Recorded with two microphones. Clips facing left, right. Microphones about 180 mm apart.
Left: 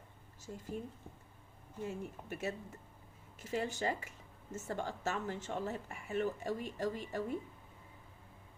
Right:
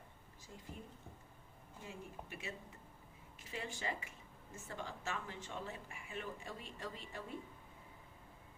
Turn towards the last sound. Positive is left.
turn(degrees=45)  # may be behind; listen again after turning